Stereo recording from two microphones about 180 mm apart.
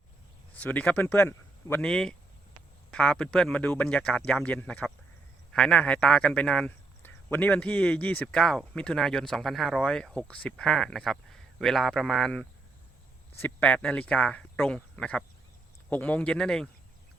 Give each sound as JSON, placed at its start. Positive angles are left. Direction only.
{"t": 0.6, "sound": "speech", "side_deg": 10}